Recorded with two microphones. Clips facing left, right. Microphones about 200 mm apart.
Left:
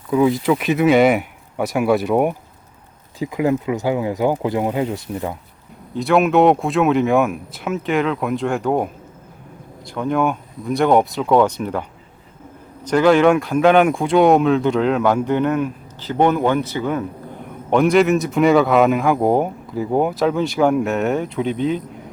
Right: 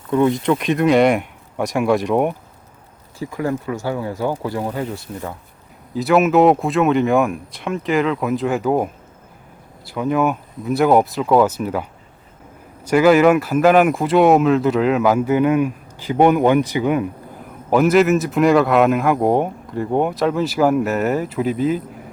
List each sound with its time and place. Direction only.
0.1 s a man's voice: 5° left (ahead or behind)
3.2 s speech: 15° left (ahead or behind)
5.9 s a man's voice: centre (ahead or behind)
17.4 s a man's voice: 5° right (ahead or behind)